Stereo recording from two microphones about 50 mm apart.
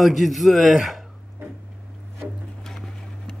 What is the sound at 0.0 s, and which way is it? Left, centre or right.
Speech, centre.